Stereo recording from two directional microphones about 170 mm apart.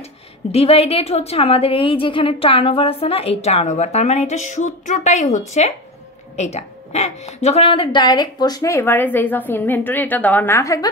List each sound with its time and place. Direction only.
0.5 s a woman's voice: 35° left (ahead or behind); by 10.9 s 20° left (ahead or behind)